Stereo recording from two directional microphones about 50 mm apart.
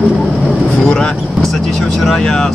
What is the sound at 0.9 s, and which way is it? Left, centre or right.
Speech, centre.